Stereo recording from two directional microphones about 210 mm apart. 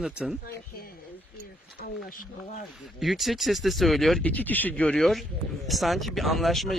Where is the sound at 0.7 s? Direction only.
45° left (ahead or behind).